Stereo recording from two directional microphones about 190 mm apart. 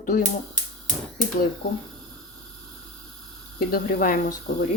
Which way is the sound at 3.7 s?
50° left (ahead or behind).